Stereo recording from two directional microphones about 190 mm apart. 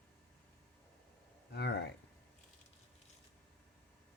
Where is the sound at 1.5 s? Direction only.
60° left (ahead or behind).